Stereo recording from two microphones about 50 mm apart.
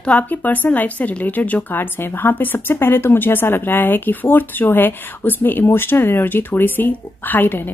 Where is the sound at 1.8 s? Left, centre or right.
Left.